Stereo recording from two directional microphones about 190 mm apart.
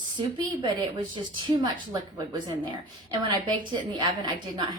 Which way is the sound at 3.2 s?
25° right (ahead or behind).